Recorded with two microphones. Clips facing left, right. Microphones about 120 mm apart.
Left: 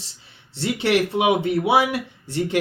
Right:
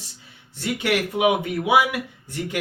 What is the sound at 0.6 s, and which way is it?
Speech, 30° left (ahead or behind).